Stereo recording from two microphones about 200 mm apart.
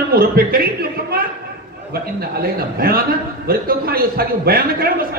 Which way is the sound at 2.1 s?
50° right (ahead or behind).